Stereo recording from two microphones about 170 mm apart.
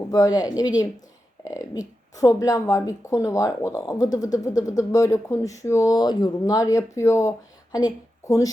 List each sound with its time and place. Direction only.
0.1 s speech: 20° left (ahead or behind)